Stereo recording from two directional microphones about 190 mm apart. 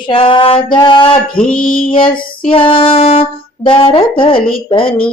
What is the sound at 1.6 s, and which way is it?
Female singing, 45° left (ahead or behind).